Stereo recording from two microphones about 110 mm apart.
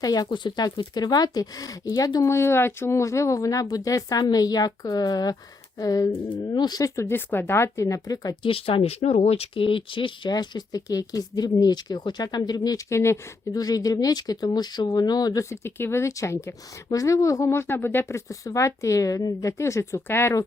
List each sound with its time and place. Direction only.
0.0 s speech: 35° left (ahead or behind)
2.3 s a woman's voice: 25° left (ahead or behind)
8.4 s speech: 55° left (ahead or behind)
10.3 s speech: 40° left (ahead or behind)
15.4 s a woman's voice: 25° left (ahead or behind)